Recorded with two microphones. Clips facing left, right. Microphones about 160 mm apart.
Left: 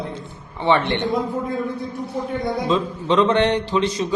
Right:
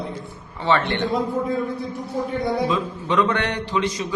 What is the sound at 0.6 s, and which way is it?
Speech, 20° left (ahead or behind).